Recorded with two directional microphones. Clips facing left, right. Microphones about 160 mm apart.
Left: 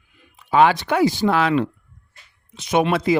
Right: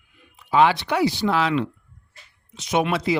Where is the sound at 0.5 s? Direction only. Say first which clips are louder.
Left 2 dB; 50° left (ahead or behind).